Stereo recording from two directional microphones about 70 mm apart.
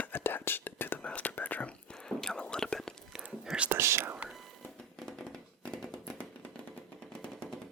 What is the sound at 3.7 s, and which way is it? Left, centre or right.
Whispering, right.